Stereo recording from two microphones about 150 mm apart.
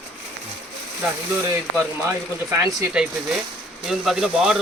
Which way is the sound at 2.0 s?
20° right (ahead or behind).